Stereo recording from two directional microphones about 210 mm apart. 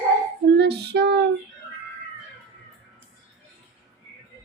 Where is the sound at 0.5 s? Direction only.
50° right (ahead or behind).